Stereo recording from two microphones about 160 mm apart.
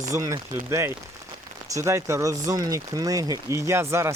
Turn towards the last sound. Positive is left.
turn(degrees=-15)  # may be behind; listen again after turning